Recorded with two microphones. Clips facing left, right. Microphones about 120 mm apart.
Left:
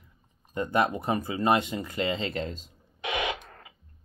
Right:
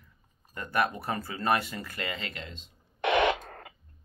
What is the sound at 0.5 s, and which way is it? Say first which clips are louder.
Speech: left 4 dB; 25° left (ahead or behind).